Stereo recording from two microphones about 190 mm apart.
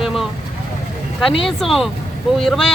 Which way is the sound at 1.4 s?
Centre (ahead or behind).